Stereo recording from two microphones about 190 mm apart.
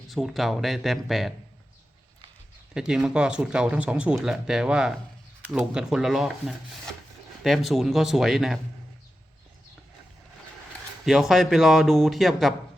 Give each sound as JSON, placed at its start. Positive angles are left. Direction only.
{"t": 0.1, "sound": "speech", "side_deg": 0}
{"t": 2.7, "sound": "speech", "side_deg": -5}
{"t": 11.0, "sound": "speech", "side_deg": 0}